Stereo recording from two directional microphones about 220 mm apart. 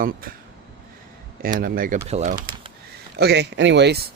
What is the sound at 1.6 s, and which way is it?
Speech, 40° right (ahead or behind).